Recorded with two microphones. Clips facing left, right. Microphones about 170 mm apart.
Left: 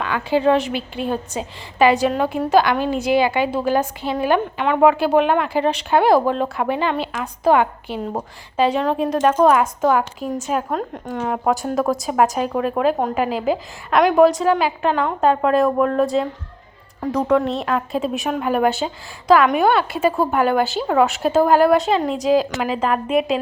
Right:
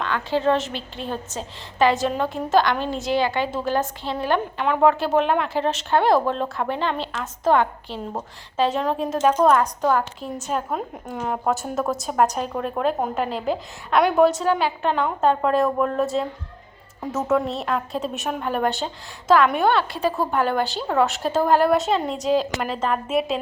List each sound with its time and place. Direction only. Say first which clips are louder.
0.0 s a woman's voice: left 4 dB; 5° left (ahead or behind)